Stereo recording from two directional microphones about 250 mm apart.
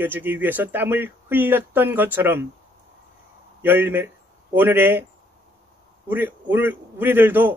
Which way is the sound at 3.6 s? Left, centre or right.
Centre.